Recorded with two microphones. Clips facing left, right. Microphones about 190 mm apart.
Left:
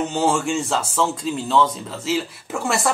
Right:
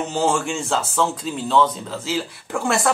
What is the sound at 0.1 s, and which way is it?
Speech, centre (ahead or behind).